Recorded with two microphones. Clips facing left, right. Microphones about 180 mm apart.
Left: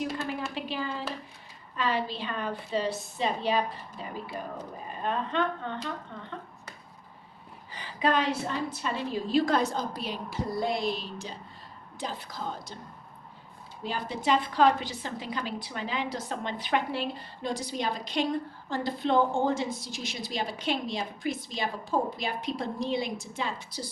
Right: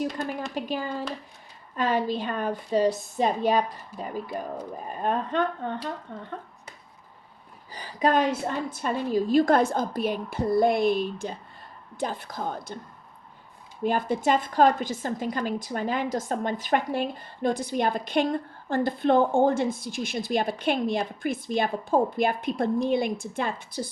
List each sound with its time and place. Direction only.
0.5 s a woman's voice: 45° right (ahead or behind)
5.0 s a woman's voice: 45° right (ahead or behind)
7.7 s a woman's voice: 40° right (ahead or behind)
13.8 s a woman's voice: 50° right (ahead or behind)